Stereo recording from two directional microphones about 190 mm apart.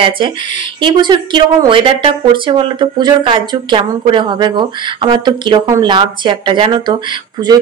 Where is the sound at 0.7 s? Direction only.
25° right (ahead or behind).